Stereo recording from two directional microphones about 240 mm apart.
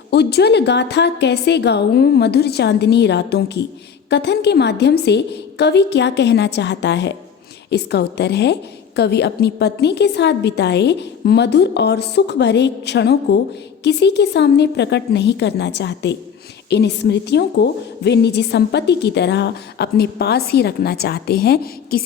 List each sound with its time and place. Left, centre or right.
0.1 s a woman's voice: left